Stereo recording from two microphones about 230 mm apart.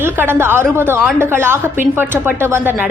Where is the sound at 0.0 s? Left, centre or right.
Centre.